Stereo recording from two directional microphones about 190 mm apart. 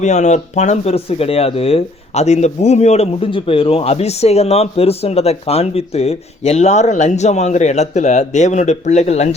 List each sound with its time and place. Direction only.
0.0 s speech: 40° left (ahead or behind)